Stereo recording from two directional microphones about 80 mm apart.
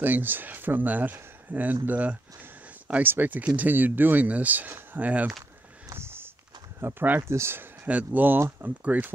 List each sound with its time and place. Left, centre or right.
0.0 s speech: right
5.9 s walk: right
6.8 s speech: right